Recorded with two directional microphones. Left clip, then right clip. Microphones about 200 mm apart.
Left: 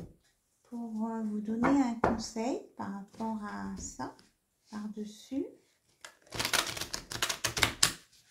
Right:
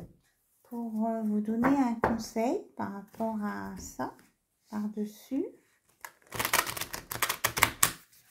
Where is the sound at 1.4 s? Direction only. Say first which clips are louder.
Even; 45° right (ahead or behind).